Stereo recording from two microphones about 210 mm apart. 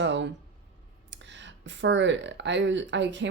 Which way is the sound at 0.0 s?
60° right (ahead or behind).